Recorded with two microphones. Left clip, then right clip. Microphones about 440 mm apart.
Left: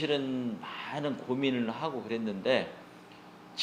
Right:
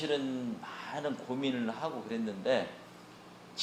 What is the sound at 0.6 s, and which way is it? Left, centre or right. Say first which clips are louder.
A man's voice: left 2 dB; left.